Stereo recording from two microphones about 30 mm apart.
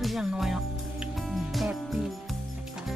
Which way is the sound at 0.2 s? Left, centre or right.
Centre.